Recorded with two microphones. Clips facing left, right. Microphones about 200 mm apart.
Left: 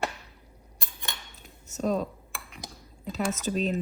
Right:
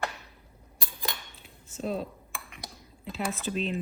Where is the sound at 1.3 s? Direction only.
40° left (ahead or behind).